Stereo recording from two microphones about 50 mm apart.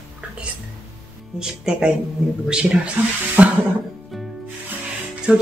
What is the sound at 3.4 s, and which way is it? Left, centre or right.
Music, right.